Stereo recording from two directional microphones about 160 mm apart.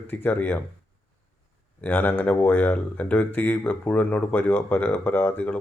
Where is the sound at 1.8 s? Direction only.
10° left (ahead or behind).